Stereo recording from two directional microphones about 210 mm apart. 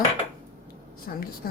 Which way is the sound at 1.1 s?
45° left (ahead or behind).